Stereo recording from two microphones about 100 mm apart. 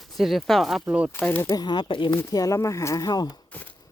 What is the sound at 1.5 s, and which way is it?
Speech, 45° left (ahead or behind).